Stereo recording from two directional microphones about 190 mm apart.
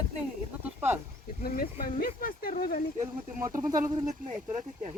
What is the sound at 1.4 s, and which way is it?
Speech, 50° left (ahead or behind).